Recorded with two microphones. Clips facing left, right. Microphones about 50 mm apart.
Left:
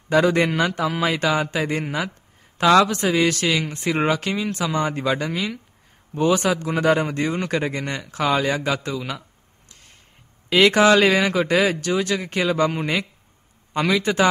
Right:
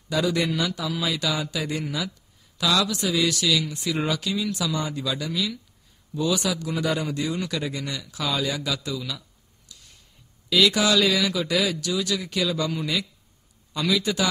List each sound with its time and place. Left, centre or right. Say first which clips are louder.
0.1 s a man's voice: left 6 dB; left
9.7 s a sound: left 1 dB; left
10.5 s a man's voice: left 6 dB; left